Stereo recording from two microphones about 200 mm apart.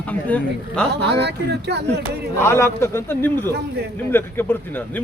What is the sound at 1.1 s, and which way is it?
Speech, 55° right (ahead or behind).